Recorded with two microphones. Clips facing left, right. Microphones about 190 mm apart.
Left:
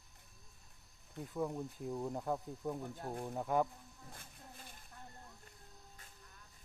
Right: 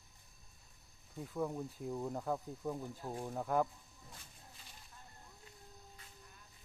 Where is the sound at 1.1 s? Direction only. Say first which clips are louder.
Even; centre (ahead or behind).